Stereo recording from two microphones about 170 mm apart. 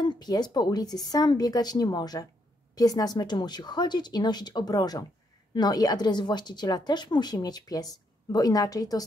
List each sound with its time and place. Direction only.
0.0 s speech: 25° left (ahead or behind)